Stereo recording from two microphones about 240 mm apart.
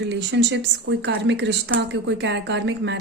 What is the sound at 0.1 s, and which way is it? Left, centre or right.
Speech, right.